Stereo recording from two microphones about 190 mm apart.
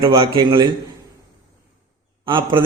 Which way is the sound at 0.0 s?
25° right (ahead or behind).